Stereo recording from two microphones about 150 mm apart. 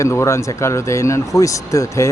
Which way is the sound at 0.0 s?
20° left (ahead or behind).